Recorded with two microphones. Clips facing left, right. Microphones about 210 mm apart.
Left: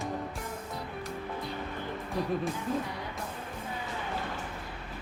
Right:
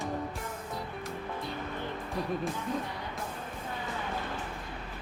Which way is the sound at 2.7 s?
5° left (ahead or behind).